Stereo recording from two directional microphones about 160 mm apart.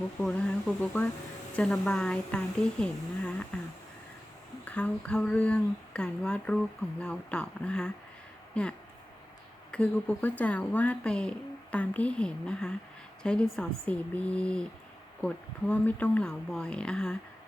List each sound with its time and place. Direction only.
0.2 s speech: 5° left (ahead or behind)
4.6 s speech: 10° left (ahead or behind)
9.7 s speech: 10° left (ahead or behind)